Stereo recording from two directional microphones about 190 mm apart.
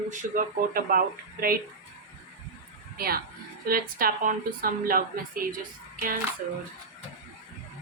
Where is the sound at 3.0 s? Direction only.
50° right (ahead or behind).